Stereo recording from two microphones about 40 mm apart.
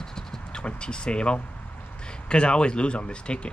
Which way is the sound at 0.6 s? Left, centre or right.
Left.